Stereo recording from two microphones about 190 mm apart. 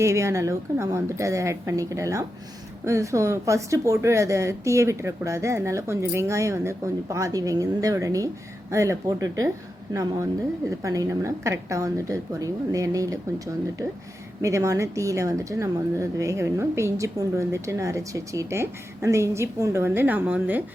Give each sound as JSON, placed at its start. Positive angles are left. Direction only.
{"t": 0.0, "sound": "speech", "side_deg": -15}